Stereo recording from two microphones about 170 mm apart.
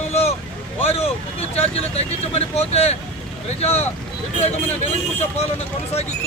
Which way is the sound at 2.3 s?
40° left (ahead or behind).